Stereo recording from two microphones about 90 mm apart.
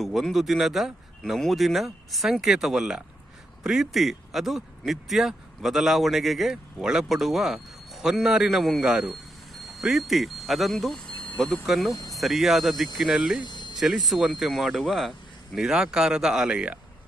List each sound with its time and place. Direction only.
0.0 s speech: centre (ahead or behind)
13.4 s cricket: 60° left (ahead or behind)
13.7 s speech: centre (ahead or behind)